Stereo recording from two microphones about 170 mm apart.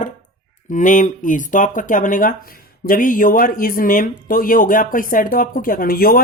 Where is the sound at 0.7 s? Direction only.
50° left (ahead or behind).